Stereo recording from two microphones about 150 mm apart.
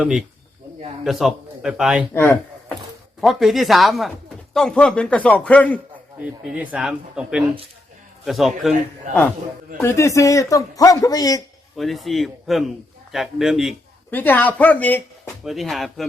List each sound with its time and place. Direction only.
0.0 s a man's voice: 5° right (ahead or behind)
2.1 s speech: 15° left (ahead or behind)
3.2 s a man's voice: centre (ahead or behind)
6.1 s a man's voice: 10° right (ahead or behind)
9.8 s speech: 20° left (ahead or behind)
11.8 s a man's voice: centre (ahead or behind)
14.1 s a man's voice: 10° left (ahead or behind)
15.4 s a man's voice: centre (ahead or behind)